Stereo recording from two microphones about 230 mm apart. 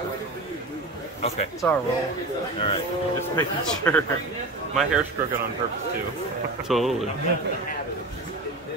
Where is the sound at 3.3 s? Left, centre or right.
Centre.